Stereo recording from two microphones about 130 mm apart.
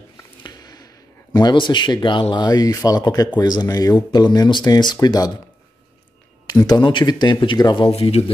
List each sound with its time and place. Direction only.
0.2 s speech: 30° left (ahead or behind)
6.6 s speech: 35° left (ahead or behind)
7.9 s speech: 50° left (ahead or behind)